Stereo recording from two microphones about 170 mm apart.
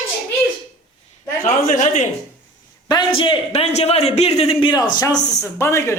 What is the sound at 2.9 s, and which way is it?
A man's voice, 30° left (ahead or behind).